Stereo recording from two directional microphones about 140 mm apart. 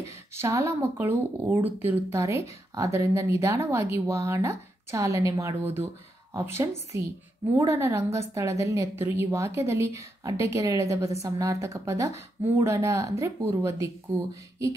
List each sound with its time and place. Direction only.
0.4 s a woman's voice: 20° right (ahead or behind)